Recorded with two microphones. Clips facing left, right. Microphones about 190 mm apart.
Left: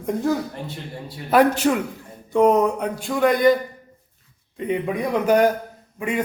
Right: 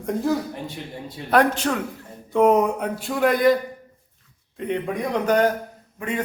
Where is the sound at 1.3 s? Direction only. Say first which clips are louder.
Left 3 dB; 5° left (ahead or behind).